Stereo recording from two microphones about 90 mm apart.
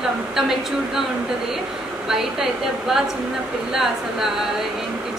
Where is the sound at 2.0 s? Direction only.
5° right (ahead or behind).